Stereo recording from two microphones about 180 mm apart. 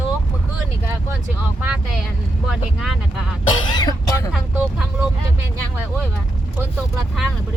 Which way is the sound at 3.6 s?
25° left (ahead or behind).